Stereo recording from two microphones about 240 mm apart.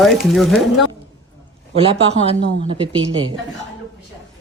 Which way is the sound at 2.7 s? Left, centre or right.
Centre.